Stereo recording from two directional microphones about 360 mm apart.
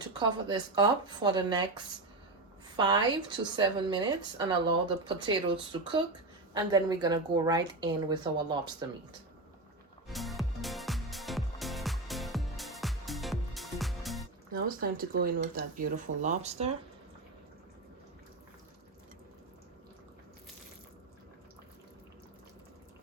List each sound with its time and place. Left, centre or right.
0.0 s speech: centre
10.1 s music: centre
14.5 s speech: right